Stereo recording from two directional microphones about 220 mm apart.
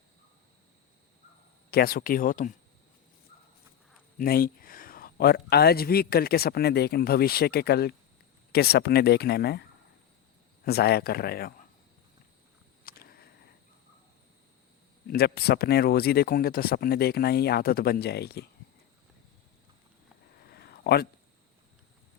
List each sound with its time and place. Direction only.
1.7 s speech: 40° left (ahead or behind)
4.2 s a man's voice: 40° left (ahead or behind)
10.7 s a man's voice: 45° left (ahead or behind)
12.8 s a sound: 40° left (ahead or behind)
15.0 s a man's voice: 45° left (ahead or behind)
20.5 s a sound: 45° left (ahead or behind)